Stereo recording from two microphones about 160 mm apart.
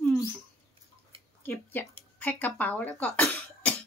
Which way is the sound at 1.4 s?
10° left (ahead or behind).